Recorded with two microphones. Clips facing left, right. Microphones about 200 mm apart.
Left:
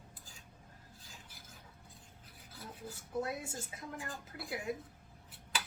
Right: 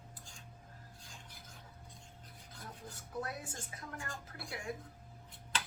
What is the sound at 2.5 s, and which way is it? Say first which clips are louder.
Filing: left 3 dB; 5° left (ahead or behind).